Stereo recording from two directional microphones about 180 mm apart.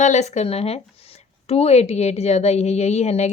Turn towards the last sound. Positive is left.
turn(degrees=40)  # may be behind; listen again after turning